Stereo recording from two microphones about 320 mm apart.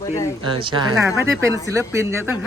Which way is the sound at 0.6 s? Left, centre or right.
Centre.